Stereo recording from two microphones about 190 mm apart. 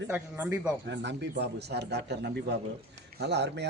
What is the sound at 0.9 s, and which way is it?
Speech, 70° right (ahead or behind).